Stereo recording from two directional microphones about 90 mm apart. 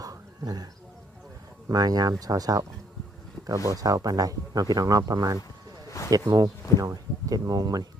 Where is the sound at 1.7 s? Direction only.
45° right (ahead or behind).